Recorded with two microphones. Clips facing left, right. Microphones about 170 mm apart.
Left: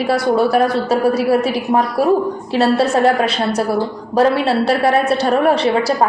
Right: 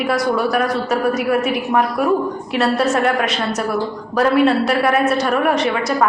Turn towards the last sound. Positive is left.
turn(degrees=30)  # may be behind; listen again after turning